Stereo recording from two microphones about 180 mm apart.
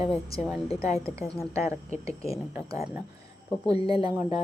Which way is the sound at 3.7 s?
30° left (ahead or behind).